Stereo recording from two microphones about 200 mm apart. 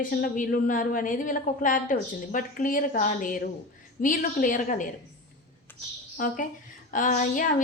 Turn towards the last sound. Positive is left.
turn(degrees=40)  # may be behind; listen again after turning